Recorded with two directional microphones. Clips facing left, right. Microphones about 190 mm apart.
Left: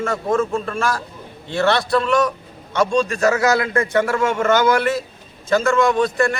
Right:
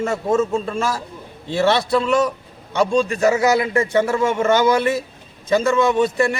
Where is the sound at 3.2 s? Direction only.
20° right (ahead or behind).